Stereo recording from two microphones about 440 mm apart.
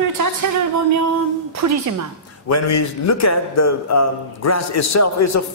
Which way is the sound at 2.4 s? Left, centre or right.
Left.